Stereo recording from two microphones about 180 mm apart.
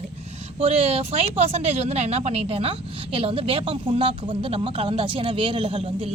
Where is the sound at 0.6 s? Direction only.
35° right (ahead or behind).